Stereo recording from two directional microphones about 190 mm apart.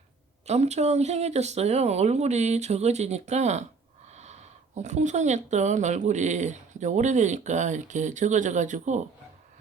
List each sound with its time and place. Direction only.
0.4 s speech: 35° right (ahead or behind)